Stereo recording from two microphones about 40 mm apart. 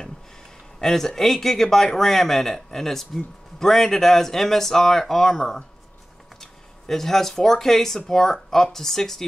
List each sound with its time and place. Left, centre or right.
0.7 s a man's voice: centre